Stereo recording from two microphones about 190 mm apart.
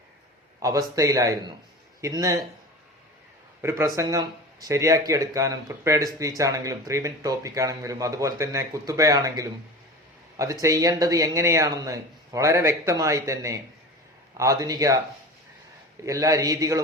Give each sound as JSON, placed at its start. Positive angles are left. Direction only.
{"t": 0.6, "sound": "speech", "side_deg": -15}
{"t": 3.6, "sound": "speech", "side_deg": -15}
{"t": 16.0, "sound": "speech", "side_deg": -15}